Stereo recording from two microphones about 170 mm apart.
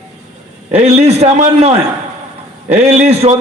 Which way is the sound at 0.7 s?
40° right (ahead or behind).